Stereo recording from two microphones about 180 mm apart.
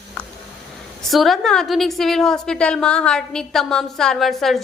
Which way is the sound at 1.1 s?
Centre (ahead or behind).